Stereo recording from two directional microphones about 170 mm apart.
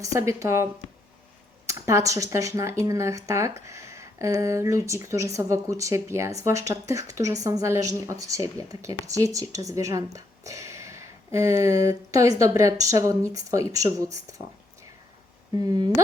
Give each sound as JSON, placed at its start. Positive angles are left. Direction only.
{"t": 0.0, "sound": "a woman's voice", "side_deg": -20}
{"t": 15.5, "sound": "speech", "side_deg": -20}